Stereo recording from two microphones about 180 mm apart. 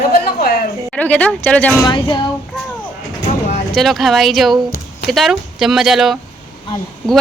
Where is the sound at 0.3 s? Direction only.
55° left (ahead or behind).